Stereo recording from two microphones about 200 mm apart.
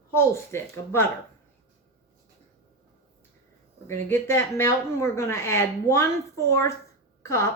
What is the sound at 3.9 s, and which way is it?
Speech, 10° left (ahead or behind).